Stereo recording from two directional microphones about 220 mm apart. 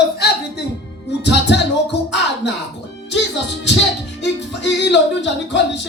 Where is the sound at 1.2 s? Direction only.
50° left (ahead or behind).